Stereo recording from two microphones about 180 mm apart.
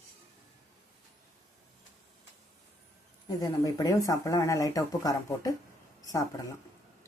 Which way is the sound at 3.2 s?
20° left (ahead or behind).